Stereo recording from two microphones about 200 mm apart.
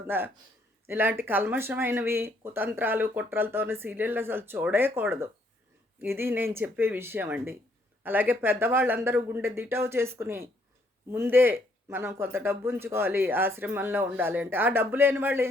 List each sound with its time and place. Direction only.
0.1 s speech: 10° right (ahead or behind)